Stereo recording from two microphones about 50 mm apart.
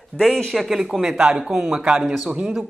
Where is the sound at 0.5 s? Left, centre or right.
Centre.